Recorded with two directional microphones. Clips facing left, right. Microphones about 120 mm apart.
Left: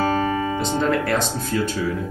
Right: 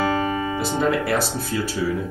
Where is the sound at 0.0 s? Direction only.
15° right (ahead or behind).